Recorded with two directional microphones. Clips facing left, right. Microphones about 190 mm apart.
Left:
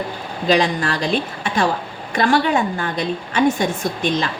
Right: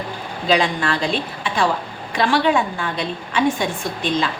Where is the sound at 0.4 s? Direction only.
40° left (ahead or behind).